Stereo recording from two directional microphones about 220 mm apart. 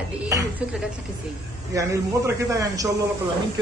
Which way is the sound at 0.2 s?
15° right (ahead or behind).